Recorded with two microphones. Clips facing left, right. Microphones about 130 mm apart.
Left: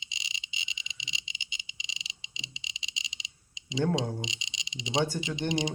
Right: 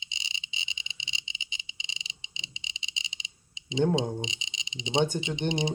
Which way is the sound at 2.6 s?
30° right (ahead or behind).